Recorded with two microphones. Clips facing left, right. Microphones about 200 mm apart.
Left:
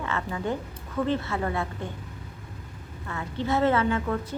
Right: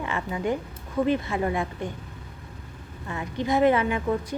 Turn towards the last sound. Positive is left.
turn(degrees=-15)  # may be behind; listen again after turning